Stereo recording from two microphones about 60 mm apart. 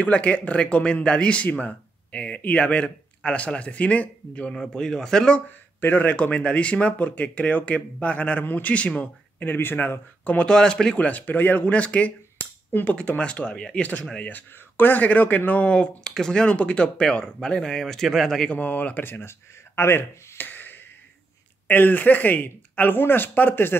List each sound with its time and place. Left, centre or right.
0.0 s speech: left
4.6 s speech: centre
5.8 s speech: left
10.2 s speech: centre
11.1 s speech: left; by 18.5 s centre
18.5 s speech: left